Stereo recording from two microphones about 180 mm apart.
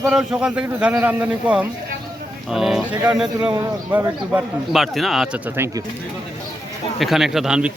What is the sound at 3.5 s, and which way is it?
Speech, 15° right (ahead or behind).